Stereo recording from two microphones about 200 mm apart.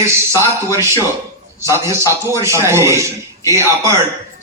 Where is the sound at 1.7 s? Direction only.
15° right (ahead or behind).